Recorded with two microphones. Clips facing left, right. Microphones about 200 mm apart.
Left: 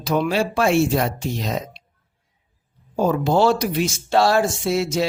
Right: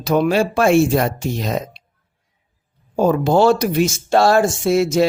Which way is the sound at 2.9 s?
50° right (ahead or behind).